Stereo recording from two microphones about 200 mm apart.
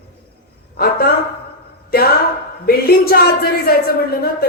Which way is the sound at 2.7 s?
50° left (ahead or behind).